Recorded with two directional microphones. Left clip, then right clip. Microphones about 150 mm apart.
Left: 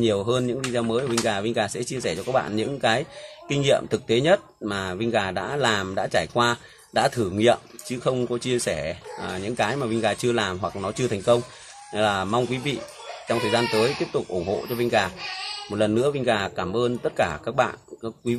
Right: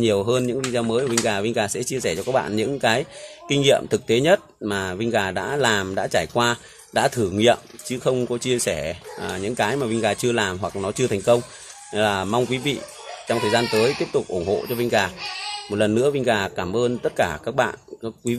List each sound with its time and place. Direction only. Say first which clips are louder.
0.0 s speech: right 3 dB; 35° right (ahead or behind)